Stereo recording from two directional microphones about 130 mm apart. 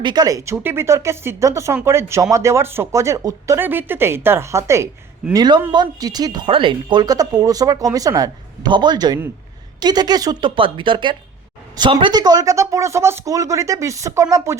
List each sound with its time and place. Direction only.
0.0 s speech: 30° right (ahead or behind)
5.3 s a woman's voice: 30° right (ahead or behind)